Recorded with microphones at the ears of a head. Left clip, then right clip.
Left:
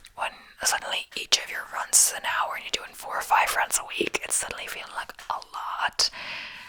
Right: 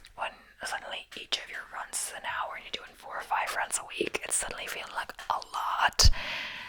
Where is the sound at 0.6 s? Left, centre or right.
Left.